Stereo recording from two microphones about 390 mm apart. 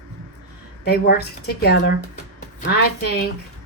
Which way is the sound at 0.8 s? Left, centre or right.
Left.